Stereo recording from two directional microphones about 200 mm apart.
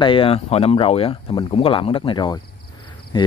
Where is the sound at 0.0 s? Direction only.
25° left (ahead or behind).